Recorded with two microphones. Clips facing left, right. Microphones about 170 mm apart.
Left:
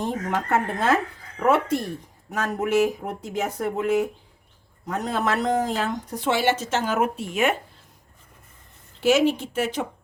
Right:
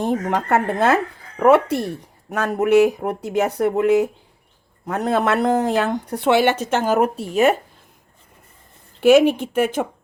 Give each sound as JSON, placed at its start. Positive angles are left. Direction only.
{"t": 0.0, "sound": "speech", "side_deg": -65}
{"t": 6.9, "sound": "speech", "side_deg": -35}
{"t": 9.0, "sound": "speech", "side_deg": -55}